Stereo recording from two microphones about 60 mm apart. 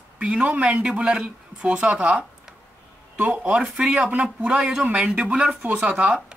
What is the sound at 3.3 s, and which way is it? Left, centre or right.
Speech, centre.